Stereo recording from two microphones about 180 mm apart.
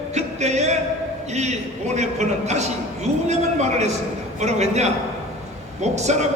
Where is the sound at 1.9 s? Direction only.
40° right (ahead or behind).